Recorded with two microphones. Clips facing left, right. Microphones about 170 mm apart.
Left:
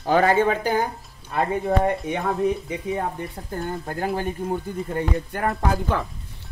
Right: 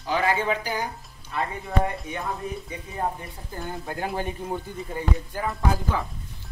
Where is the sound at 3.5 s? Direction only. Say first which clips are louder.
Left 3 dB; 50° left (ahead or behind).